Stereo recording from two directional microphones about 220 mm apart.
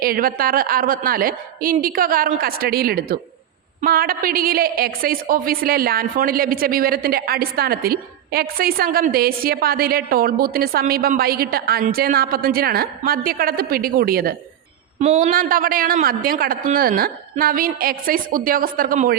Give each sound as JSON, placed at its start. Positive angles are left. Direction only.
{"t": 0.0, "sound": "a man's voice", "side_deg": -40}
{"t": 14.9, "sound": "a man's voice", "side_deg": -30}